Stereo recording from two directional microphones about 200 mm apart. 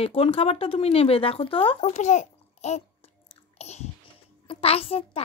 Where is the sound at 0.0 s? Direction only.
30° left (ahead or behind).